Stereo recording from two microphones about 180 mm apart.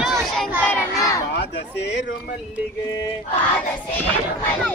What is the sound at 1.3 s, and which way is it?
Speech, 75° left (ahead or behind).